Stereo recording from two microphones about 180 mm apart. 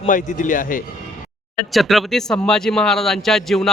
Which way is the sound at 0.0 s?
45° left (ahead or behind).